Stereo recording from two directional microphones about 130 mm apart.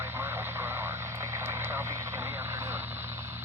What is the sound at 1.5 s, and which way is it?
Vehicle, 20° right (ahead or behind).